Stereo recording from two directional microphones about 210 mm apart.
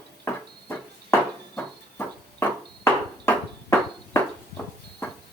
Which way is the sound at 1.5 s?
10° left (ahead or behind).